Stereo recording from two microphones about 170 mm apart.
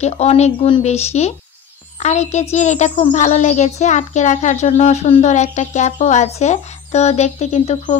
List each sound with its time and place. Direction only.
0.0 s a child's voice: 40° left (ahead or behind)